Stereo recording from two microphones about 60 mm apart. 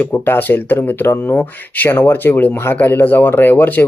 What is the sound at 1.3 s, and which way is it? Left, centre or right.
Speech, left.